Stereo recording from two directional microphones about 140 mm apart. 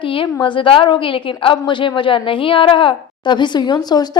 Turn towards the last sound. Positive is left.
turn(degrees=30)  # may be behind; listen again after turning